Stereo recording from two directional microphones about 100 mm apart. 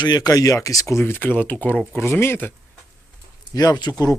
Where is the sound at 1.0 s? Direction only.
20° left (ahead or behind).